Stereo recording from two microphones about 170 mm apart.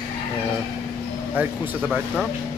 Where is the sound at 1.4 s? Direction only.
10° right (ahead or behind).